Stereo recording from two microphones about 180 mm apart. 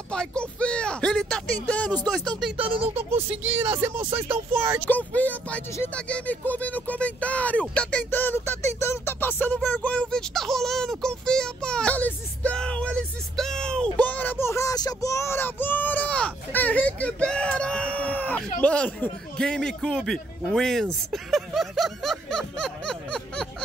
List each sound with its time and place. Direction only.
0.1 s speech: 5° left (ahead or behind)
2.5 s speech: 30° right (ahead or behind)
3.3 s speech: 10° right (ahead or behind)
4.8 s speech: 10° left (ahead or behind)
7.7 s a sound: 5° left (ahead or behind)
13.9 s child singing: 10° left (ahead or behind)
18.6 s a man's voice: 5° left (ahead or behind)